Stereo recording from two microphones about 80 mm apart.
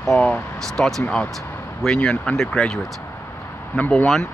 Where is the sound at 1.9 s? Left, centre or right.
Centre.